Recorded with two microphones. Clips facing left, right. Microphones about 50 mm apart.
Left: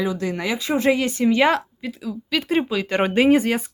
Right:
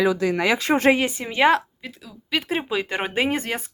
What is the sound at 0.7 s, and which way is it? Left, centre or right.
Speech, right.